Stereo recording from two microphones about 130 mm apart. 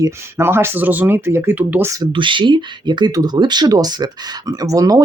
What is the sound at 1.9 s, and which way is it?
Speech, 35° right (ahead or behind).